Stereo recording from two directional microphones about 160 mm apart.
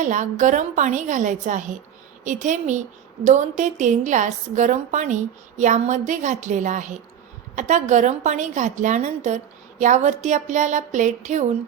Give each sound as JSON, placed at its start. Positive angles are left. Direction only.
{"t": 0.0, "sound": "a woman's voice", "side_deg": -50}